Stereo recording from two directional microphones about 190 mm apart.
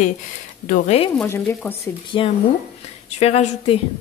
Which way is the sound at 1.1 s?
15° left (ahead or behind).